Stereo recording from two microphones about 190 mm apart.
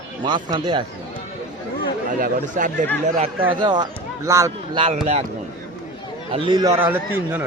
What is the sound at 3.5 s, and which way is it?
Speech, 25° right (ahead or behind).